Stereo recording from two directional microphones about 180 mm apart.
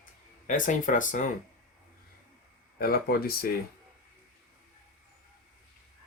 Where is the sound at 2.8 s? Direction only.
55° left (ahead or behind).